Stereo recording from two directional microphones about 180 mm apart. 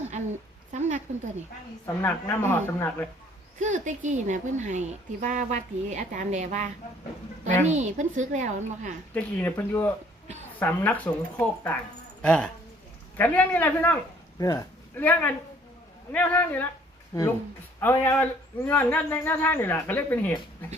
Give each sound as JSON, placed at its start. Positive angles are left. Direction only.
{"t": 0.7, "sound": "a sound", "side_deg": -45}
{"t": 2.0, "sound": "speech", "side_deg": 10}
{"t": 3.6, "sound": "speech", "side_deg": -45}
{"t": 7.7, "sound": "speech", "side_deg": -40}
{"t": 9.1, "sound": "speech", "side_deg": 10}
{"t": 14.3, "sound": "a sound", "side_deg": 20}
{"t": 16.1, "sound": "speech", "side_deg": 10}